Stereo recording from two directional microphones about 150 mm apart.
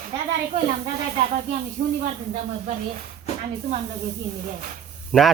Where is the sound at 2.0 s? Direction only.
55° right (ahead or behind).